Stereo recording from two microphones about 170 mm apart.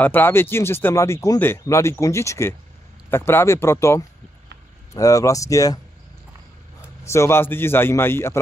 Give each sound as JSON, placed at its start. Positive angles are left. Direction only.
{"t": 0.0, "sound": "speech", "side_deg": 10}
{"t": 7.1, "sound": "speech", "side_deg": 15}